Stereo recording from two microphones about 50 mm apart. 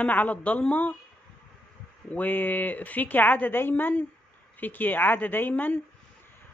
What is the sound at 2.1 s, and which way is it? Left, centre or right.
Speech, left.